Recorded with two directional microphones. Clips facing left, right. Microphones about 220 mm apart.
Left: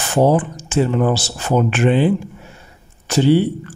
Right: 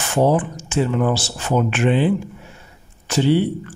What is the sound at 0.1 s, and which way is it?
Speech, 35° left (ahead or behind).